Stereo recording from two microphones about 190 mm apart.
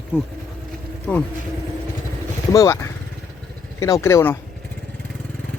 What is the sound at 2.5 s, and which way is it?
Speech, 15° left (ahead or behind).